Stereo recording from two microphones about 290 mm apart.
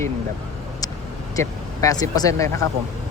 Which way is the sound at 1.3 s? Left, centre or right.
Centre.